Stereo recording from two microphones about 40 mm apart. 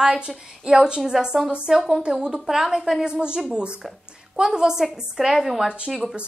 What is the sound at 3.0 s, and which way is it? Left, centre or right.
A woman's voice, right.